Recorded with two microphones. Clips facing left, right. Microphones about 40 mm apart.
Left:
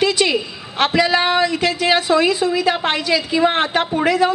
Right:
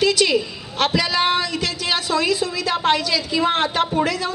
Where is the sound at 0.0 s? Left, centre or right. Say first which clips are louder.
Left 1 dB; left.